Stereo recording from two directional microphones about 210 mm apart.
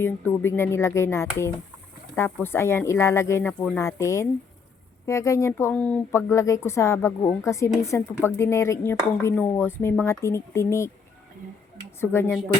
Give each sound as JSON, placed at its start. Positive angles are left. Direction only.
{"t": 0.0, "sound": "speech", "side_deg": 10}
{"t": 11.9, "sound": "speech", "side_deg": 10}